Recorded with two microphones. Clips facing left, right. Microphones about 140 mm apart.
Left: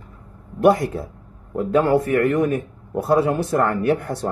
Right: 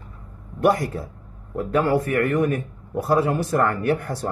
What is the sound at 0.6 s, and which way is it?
Speech, 20° left (ahead or behind).